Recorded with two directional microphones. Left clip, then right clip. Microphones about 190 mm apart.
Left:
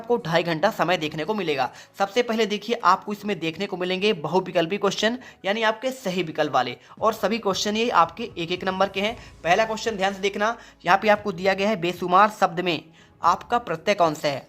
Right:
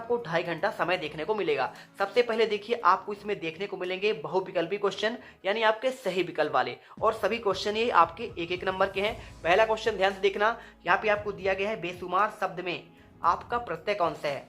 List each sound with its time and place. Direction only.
0.1 s a woman's voice: 40° left (ahead or behind)
10.8 s speech: 45° left (ahead or behind)